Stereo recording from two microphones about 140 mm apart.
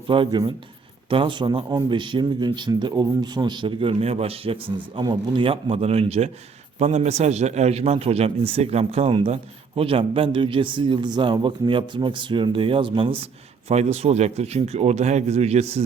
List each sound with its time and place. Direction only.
0.1 s a man's voice: 35° right (ahead or behind)
13.7 s speech: 50° right (ahead or behind)